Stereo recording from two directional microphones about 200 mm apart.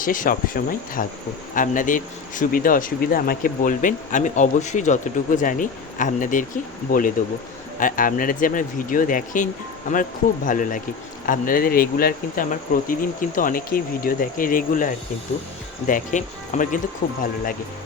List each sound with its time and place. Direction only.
0.0 s speech: 45° left (ahead or behind)